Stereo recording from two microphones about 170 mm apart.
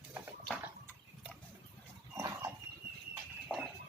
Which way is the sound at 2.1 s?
15° right (ahead or behind).